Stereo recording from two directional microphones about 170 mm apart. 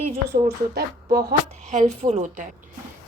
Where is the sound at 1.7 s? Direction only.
40° right (ahead or behind).